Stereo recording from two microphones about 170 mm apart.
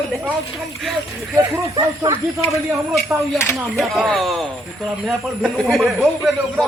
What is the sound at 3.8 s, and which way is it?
A man's voice, centre (ahead or behind).